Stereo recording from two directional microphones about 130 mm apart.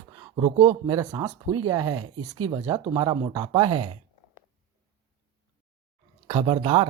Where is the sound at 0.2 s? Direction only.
30° right (ahead or behind).